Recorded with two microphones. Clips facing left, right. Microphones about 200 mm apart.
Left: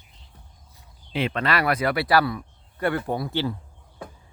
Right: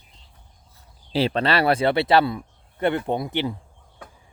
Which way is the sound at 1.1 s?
35° right (ahead or behind).